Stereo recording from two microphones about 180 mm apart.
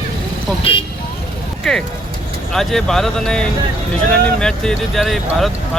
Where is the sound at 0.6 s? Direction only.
30° left (ahead or behind).